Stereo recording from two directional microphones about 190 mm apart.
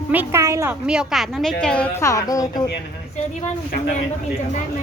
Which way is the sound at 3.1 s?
40° left (ahead or behind).